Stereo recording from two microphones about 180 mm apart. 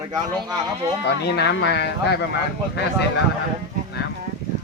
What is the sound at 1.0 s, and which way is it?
Speech, 70° left (ahead or behind).